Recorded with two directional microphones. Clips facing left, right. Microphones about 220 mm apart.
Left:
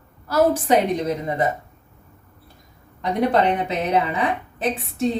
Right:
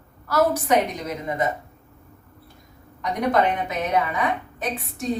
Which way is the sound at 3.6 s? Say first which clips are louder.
Left 2 dB; 30° left (ahead or behind).